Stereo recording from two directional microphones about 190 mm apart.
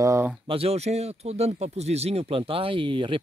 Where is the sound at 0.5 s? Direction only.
30° right (ahead or behind).